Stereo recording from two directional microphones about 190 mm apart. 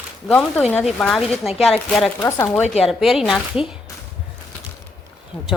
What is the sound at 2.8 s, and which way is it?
Speech, centre (ahead or behind).